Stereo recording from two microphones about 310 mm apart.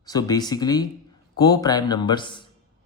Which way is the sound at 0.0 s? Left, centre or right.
Centre.